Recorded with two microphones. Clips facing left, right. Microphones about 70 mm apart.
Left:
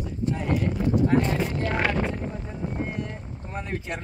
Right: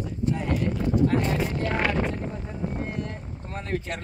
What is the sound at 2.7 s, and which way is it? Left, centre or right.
Boat, centre.